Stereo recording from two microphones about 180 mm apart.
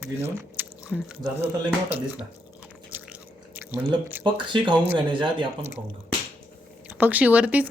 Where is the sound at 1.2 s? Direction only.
15° right (ahead or behind).